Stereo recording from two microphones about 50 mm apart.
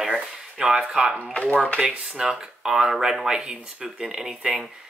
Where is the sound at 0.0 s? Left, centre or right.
Centre.